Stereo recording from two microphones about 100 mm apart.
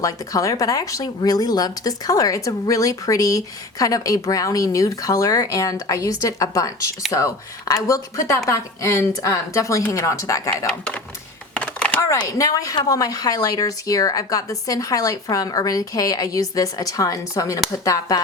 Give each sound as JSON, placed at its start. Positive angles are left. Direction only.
{"t": 0.0, "sound": "speech", "side_deg": 35}
{"t": 10.7, "sound": "speech", "side_deg": 15}
{"t": 11.5, "sound": "a sound", "side_deg": 15}
{"t": 12.0, "sound": "speech", "side_deg": 35}